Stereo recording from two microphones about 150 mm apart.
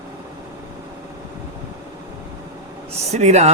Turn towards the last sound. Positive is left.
turn(degrees=-50)  # may be behind; listen again after turning